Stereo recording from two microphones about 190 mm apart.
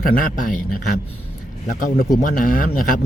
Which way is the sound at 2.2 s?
45° left (ahead or behind).